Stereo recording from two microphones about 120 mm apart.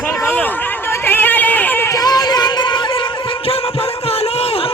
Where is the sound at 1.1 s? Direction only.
15° left (ahead or behind).